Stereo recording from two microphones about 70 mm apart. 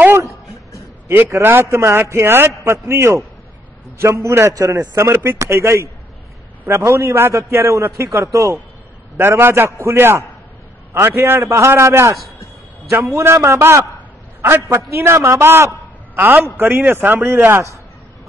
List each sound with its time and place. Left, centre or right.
1.0 s a man's voice: right
16.2 s speech: right